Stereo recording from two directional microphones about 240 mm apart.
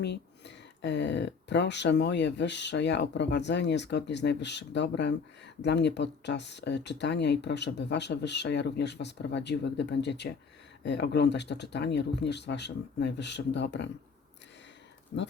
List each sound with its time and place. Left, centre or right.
0.0 s speech: left
15.1 s speech: left